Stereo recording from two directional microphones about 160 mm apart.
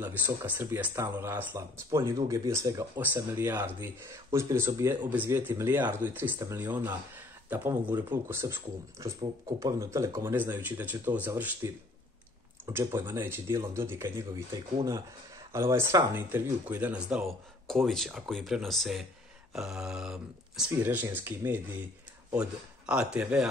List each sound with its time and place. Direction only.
0.5 s speech: 10° right (ahead or behind)
17.6 s speech: centre (ahead or behind)